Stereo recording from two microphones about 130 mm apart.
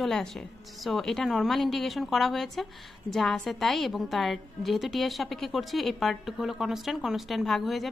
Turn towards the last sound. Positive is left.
turn(degrees=0)  # may be behind; listen again after turning